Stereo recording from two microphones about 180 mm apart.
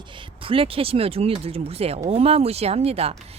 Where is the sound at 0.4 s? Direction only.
30° right (ahead or behind).